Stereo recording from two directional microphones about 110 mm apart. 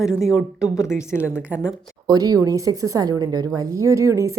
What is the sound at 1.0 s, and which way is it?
Speech, 25° left (ahead or behind).